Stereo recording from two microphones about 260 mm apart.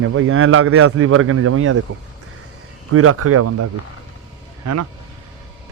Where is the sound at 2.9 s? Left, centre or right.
Right.